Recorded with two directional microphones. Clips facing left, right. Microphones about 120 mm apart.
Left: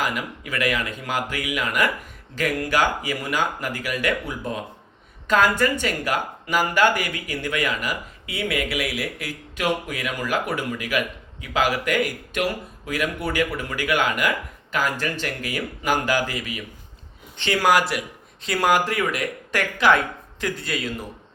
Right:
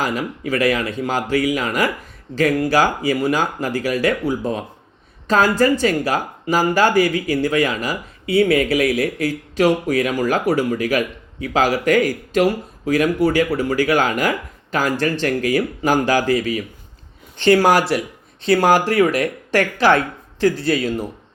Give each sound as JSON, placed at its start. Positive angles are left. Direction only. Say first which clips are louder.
{"t": 0.0, "sound": "speech", "louder": "right 5 dB", "side_deg": -35}